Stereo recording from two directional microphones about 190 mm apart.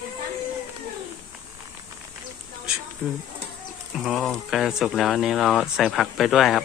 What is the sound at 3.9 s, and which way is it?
Speech, centre (ahead or behind).